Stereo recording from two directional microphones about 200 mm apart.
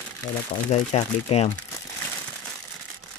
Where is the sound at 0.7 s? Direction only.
30° left (ahead or behind).